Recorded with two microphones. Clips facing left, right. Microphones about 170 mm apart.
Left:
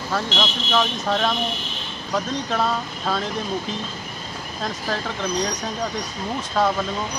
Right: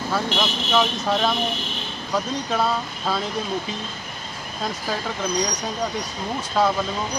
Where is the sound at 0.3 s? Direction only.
60° right (ahead or behind).